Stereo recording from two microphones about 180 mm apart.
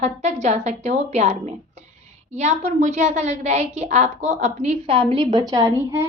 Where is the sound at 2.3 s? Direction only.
40° right (ahead or behind); by 6.0 s 15° right (ahead or behind).